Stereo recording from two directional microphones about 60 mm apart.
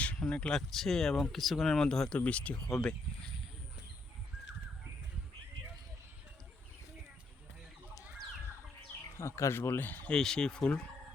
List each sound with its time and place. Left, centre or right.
0.0 s a sound: left
0.5 s speech: centre
2.1 s speech: left
2.6 s speech: centre
9.1 s speech: left
10.1 s speech: centre